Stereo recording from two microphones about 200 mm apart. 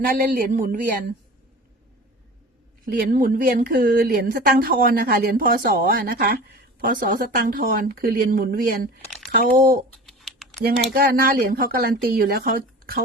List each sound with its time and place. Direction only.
0.0 s a woman's voice: 45° right (ahead or behind)
3.1 s a woman's voice: 45° right (ahead or behind)
10.1 s typing: centre (ahead or behind)
10.9 s a woman's voice: 50° right (ahead or behind)